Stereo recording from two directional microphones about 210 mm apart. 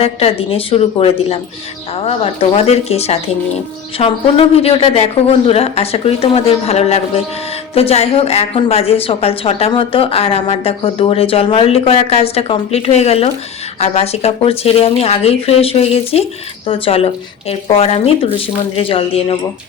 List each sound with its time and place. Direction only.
0.0 s a woman's voice: 30° left (ahead or behind)